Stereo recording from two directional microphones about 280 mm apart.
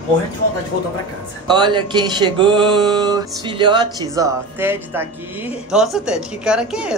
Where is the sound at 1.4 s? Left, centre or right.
Centre.